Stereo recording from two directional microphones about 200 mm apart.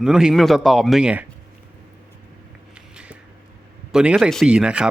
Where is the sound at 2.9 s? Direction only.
5° right (ahead or behind).